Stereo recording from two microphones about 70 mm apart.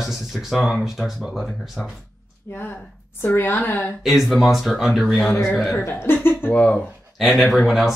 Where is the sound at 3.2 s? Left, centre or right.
Left.